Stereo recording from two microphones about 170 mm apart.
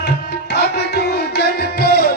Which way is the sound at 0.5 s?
75° left (ahead or behind).